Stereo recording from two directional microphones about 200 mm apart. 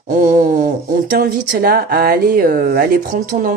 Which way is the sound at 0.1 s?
40° right (ahead or behind).